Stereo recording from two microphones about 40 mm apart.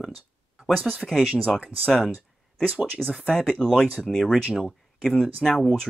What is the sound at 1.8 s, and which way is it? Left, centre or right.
Speech, centre.